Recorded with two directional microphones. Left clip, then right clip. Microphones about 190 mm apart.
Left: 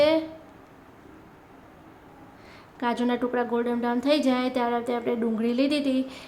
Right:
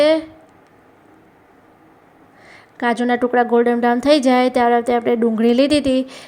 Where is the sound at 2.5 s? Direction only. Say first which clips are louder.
Right 8 dB; 30° right (ahead or behind).